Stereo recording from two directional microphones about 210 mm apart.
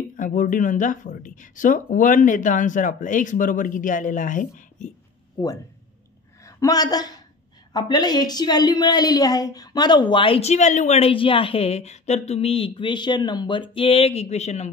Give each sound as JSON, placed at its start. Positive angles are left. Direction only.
{"t": 0.1, "sound": "speech", "side_deg": 40}
{"t": 5.4, "sound": "a woman's voice", "side_deg": 20}